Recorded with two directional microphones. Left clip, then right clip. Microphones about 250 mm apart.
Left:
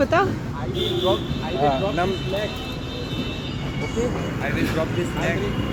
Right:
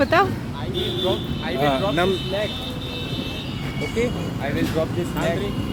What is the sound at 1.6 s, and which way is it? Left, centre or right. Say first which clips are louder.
Speech: right 1 dB; right.